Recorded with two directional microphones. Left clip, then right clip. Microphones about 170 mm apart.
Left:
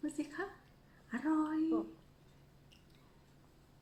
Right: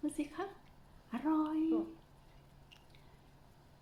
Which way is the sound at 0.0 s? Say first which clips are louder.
Right 1 dB; 15° right (ahead or behind).